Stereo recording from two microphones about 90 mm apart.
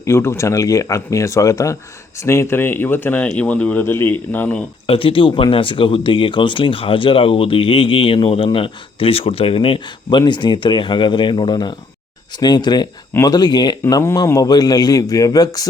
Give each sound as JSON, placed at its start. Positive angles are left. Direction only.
{"t": 0.0, "sound": "speech", "side_deg": 30}
{"t": 4.9, "sound": "a man's voice", "side_deg": 85}